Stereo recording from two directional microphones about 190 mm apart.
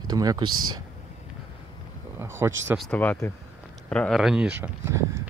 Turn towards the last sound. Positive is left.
turn(degrees=-15)  # may be behind; listen again after turning